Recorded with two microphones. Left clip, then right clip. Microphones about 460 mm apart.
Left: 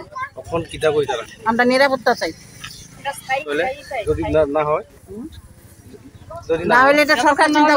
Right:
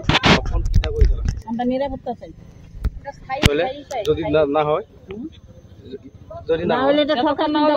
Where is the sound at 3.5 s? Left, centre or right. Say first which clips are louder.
Even; right.